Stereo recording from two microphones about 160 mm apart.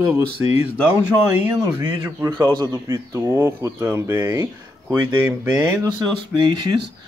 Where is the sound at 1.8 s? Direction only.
30° right (ahead or behind).